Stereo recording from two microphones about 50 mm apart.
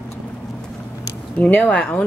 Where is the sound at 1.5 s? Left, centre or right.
Left.